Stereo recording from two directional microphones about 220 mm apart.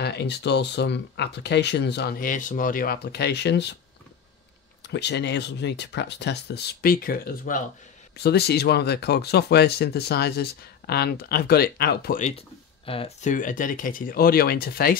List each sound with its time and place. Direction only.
0.0 s speech: 50° left (ahead or behind)
4.9 s speech: 50° left (ahead or behind)